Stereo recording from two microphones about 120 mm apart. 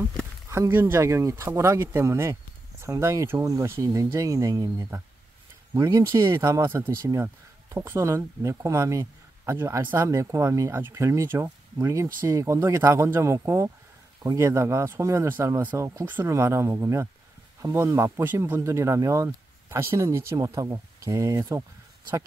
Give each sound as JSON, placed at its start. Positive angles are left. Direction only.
{"t": 0.5, "sound": "speech", "side_deg": -20}